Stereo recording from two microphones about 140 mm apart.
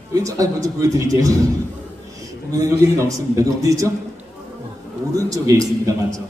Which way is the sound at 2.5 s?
20° right (ahead or behind).